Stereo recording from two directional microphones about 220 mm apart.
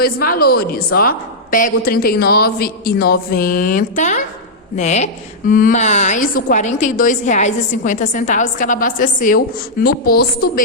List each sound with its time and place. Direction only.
0.0 s a woman's voice: 45° left (ahead or behind)